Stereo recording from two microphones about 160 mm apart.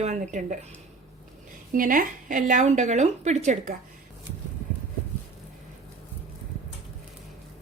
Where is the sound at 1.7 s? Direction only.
60° right (ahead or behind).